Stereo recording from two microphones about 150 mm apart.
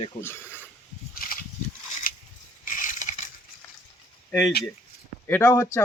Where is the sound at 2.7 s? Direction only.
60° left (ahead or behind).